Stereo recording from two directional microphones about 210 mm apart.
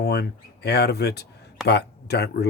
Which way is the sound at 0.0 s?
50° left (ahead or behind).